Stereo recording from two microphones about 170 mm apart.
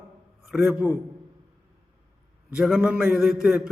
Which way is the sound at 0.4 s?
5° right (ahead or behind).